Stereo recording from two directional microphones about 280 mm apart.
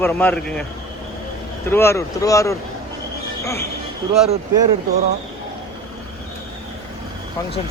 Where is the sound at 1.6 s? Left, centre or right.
Centre.